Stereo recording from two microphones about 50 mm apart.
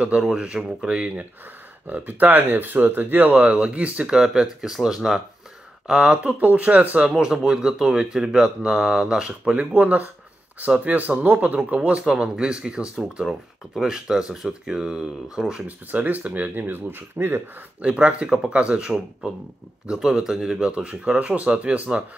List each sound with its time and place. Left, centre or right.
0.0 s speech: centre
1.9 s speech: right
4.1 s speech: centre
6.2 s speech: right
7.1 s speech: centre
9.4 s speech: right
12.0 s speech: centre
15.6 s speech: right
17.8 s speech: right
20.6 s speech: right